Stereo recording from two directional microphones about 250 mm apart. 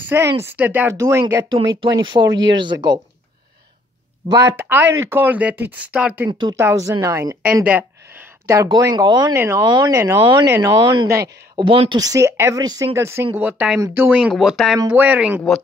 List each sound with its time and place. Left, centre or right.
0.1 s a woman's voice: centre
2.3 s speech: right
2.6 s a woman's voice: centre
4.3 s a woman's voice: centre